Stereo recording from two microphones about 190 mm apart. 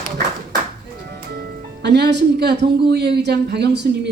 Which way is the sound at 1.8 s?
60° right (ahead or behind).